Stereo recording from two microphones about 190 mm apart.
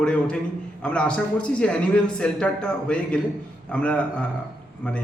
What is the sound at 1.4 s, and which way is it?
A man's voice, 5° left (ahead or behind).